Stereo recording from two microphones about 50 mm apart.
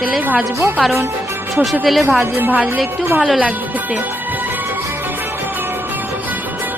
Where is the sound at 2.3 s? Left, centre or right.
Right.